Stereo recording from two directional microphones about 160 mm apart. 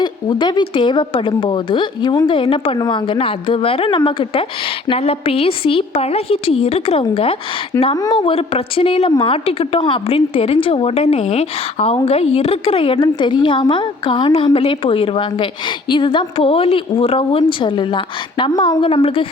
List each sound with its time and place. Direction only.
0.0 s a woman's voice: 25° left (ahead or behind)